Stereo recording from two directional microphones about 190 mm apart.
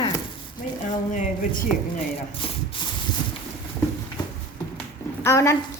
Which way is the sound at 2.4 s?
30° left (ahead or behind).